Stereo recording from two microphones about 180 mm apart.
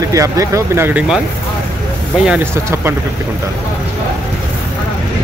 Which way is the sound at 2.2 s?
10° right (ahead or behind).